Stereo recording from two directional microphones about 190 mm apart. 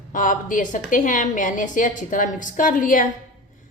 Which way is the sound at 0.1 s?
45° left (ahead or behind).